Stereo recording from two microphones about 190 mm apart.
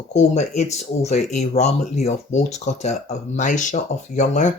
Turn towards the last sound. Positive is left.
turn(degrees=40)  # may be behind; listen again after turning